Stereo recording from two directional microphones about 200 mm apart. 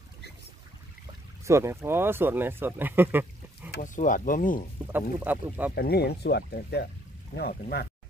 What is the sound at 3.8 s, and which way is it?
Speech, 40° left (ahead or behind).